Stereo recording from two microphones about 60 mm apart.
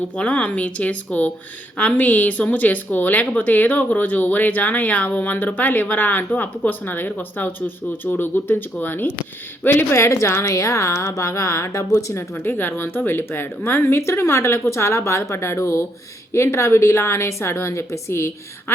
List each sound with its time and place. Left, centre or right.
0.2 s a woman's voice: left
10.1 s a woman's voice: left
12.3 s a woman's voice: left